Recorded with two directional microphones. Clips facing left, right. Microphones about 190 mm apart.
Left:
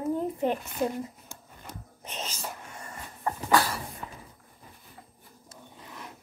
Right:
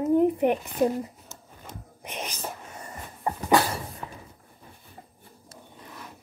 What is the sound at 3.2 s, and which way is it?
Dog, 20° right (ahead or behind).